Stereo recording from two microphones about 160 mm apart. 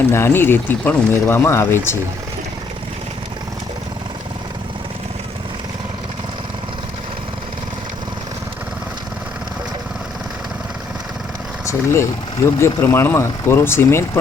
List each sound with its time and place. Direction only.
0.1 s speech: 15° left (ahead or behind)
11.6 s speech: 20° left (ahead or behind)